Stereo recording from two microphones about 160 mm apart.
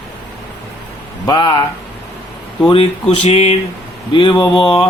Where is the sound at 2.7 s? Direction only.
35° left (ahead or behind).